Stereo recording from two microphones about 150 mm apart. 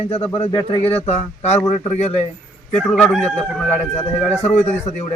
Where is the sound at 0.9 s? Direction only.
45° left (ahead or behind).